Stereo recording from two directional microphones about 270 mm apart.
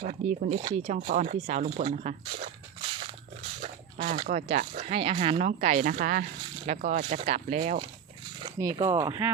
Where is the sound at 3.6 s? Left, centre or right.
Right.